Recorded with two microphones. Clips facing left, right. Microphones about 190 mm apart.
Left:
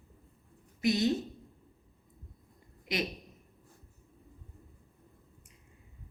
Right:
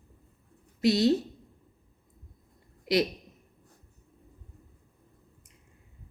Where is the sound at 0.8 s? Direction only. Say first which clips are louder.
Right 5 dB; 75° right (ahead or behind).